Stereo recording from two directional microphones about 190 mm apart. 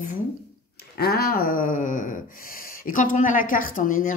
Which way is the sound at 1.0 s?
55° left (ahead or behind).